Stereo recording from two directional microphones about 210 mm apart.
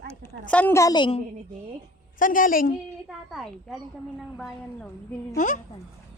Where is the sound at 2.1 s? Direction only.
40° left (ahead or behind).